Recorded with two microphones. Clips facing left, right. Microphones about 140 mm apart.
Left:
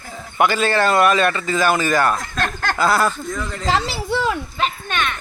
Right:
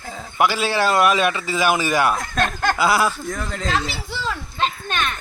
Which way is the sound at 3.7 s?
65° left (ahead or behind).